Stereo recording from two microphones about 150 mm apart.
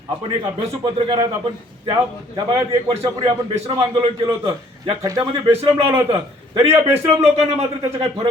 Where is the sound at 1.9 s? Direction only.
30° right (ahead or behind).